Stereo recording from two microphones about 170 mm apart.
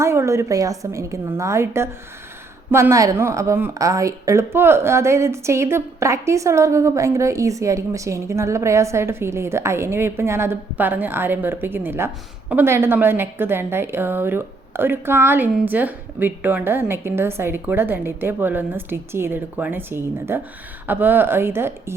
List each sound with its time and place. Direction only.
0.0 s a woman's voice: 15° right (ahead or behind)